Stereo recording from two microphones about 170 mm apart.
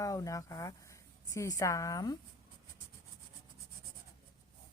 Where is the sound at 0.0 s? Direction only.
20° left (ahead or behind).